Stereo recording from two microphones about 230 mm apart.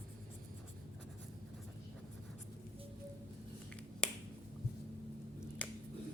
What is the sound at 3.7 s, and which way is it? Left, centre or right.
Finger snapping, centre.